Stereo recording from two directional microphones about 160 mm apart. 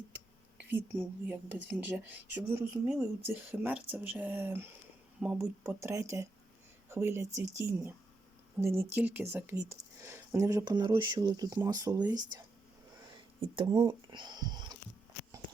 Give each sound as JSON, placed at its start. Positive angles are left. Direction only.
{"t": 0.6, "sound": "speech", "side_deg": -10}
{"t": 13.4, "sound": "speech", "side_deg": -30}